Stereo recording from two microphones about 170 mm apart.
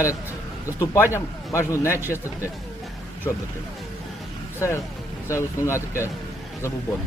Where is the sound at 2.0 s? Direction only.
10° right (ahead or behind).